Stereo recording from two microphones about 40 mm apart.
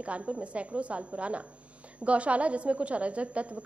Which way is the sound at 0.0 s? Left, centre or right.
Right.